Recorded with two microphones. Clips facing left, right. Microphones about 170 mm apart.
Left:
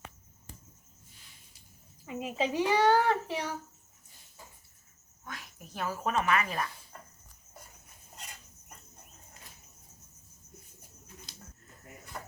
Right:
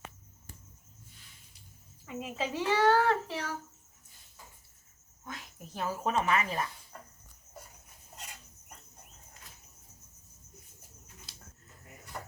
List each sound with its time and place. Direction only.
2.0 s a child's voice: 15° left (ahead or behind)
5.2 s a woman's voice: 25° right (ahead or behind)